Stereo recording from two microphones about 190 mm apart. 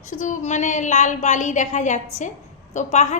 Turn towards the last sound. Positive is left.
turn(degrees=40)  # may be behind; listen again after turning